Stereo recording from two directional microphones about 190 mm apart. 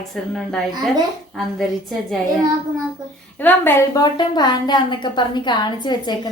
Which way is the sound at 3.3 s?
10° left (ahead or behind).